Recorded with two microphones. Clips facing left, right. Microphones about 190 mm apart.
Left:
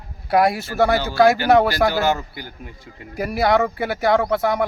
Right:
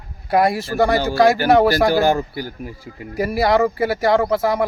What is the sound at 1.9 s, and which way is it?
Speech, 45° right (ahead or behind).